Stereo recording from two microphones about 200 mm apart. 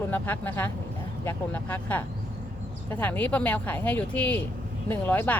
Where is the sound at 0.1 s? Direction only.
10° left (ahead or behind).